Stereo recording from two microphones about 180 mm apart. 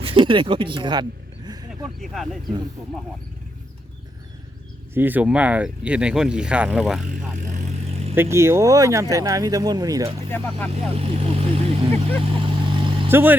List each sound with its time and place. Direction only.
0.0 s speech: 30° right (ahead or behind)
2.0 s speech: centre (ahead or behind)
4.9 s speech: 10° right (ahead or behind)
7.9 s vehicle: 35° right (ahead or behind)
8.1 s speech: 15° right (ahead or behind)
10.2 s speech: 10° left (ahead or behind)
10.7 s vehicle: 35° right (ahead or behind)
13.1 s speech: 10° right (ahead or behind)